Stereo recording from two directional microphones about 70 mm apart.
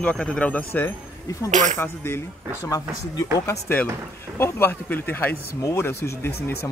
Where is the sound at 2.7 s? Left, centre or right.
Left.